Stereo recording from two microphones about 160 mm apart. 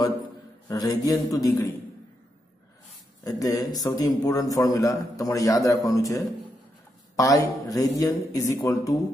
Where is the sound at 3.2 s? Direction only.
20° left (ahead or behind).